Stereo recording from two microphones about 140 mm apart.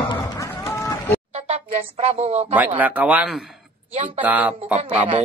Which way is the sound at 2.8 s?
10° right (ahead or behind).